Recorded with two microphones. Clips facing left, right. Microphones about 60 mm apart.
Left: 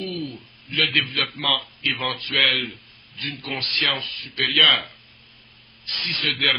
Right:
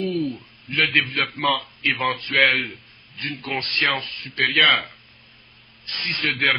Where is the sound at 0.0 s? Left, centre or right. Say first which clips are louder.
Right 6 dB; right.